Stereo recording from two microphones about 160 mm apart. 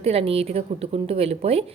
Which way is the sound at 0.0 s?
40° right (ahead or behind).